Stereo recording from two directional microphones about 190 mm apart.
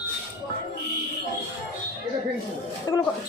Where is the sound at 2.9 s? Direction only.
20° left (ahead or behind).